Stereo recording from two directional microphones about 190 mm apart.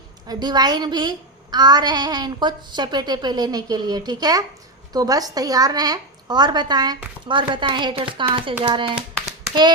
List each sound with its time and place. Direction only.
0.3 s a woman's voice: 20° right (ahead or behind)
9.0 s hands: centre (ahead or behind)